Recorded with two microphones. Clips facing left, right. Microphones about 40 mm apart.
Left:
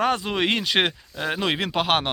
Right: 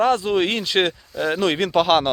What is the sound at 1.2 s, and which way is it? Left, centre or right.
Speech, centre.